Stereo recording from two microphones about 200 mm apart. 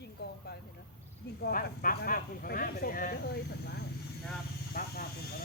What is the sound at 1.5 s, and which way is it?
Speech, 45° left (ahead or behind).